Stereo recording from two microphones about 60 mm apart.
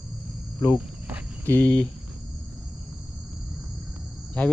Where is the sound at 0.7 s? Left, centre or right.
Right.